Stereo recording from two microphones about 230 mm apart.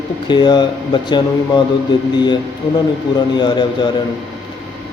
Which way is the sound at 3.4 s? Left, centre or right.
Centre.